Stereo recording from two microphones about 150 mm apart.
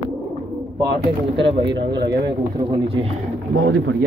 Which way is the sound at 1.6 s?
30° right (ahead or behind).